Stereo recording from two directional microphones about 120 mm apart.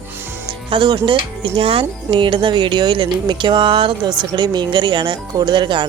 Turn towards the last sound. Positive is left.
turn(degrees=-40)  # may be behind; listen again after turning